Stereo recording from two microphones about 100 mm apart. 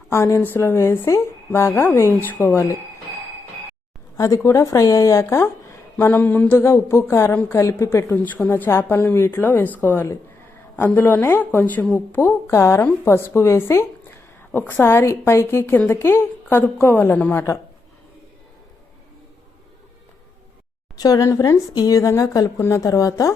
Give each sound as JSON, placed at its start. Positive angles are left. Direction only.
{"t": 0.1, "sound": "speech", "side_deg": 30}
{"t": 4.2, "sound": "a woman's voice", "side_deg": 30}
{"t": 7.6, "sound": "a woman's voice", "side_deg": 30}
{"t": 8.1, "sound": "speech", "side_deg": 15}
{"t": 21.0, "sound": "a woman's voice", "side_deg": 35}